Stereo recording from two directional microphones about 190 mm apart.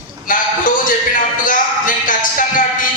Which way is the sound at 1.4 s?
45° left (ahead or behind).